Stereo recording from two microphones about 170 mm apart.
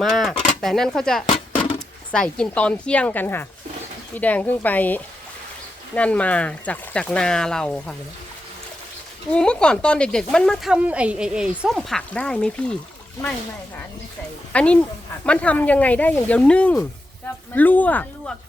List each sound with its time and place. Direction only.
0.0 s speech: centre (ahead or behind)
9.3 s speech: 5° left (ahead or behind)
14.5 s speech: 5° left (ahead or behind)